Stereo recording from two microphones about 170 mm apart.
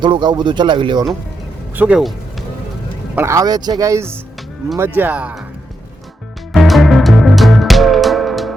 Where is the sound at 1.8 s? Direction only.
5° right (ahead or behind).